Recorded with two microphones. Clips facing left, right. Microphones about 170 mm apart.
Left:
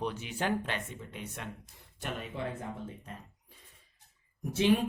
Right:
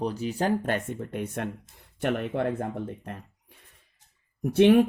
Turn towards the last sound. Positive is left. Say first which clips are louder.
# right 9 dB
turn(degrees=-60)  # may be behind; listen again after turning